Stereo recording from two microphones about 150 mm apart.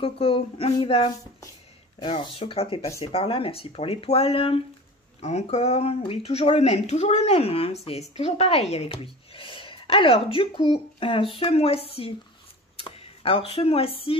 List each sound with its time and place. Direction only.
0.0 s a woman's voice: 40° left (ahead or behind)